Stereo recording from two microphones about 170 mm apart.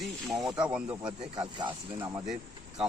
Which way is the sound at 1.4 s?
30° right (ahead or behind).